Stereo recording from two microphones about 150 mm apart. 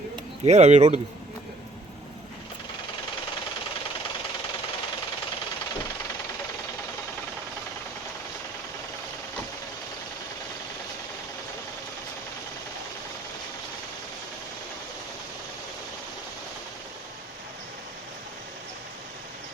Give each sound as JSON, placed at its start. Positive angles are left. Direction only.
{"t": 0.4, "sound": "speech", "side_deg": -50}